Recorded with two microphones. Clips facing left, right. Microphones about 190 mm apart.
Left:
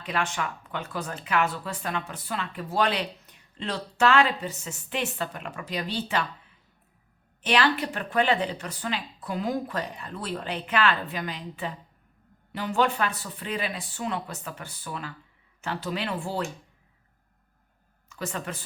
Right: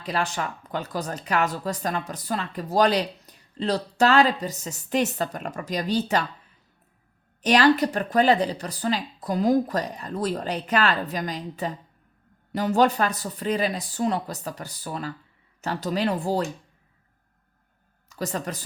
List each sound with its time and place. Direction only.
0.0 s speech: 35° right (ahead or behind)
7.4 s speech: 40° right (ahead or behind)
18.1 s speech: 40° right (ahead or behind)